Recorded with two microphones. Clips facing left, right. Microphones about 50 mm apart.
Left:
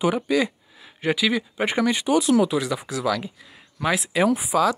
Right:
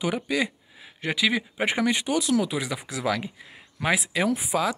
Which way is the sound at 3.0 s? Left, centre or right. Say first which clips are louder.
Even; right.